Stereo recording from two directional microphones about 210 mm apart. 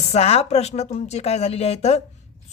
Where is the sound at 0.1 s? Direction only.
30° left (ahead or behind).